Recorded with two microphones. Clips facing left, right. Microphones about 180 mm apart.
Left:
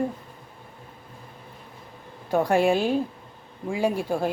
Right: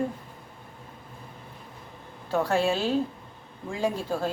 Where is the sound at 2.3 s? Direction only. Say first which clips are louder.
Left 4 dB; 15° left (ahead or behind).